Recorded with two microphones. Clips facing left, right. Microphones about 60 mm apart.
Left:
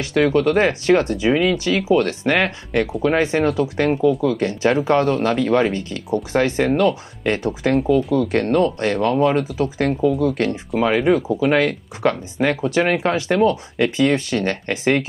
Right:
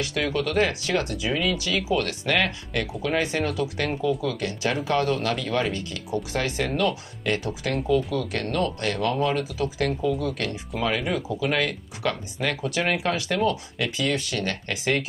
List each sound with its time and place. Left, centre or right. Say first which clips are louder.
0.0 s speech: left 9 dB; left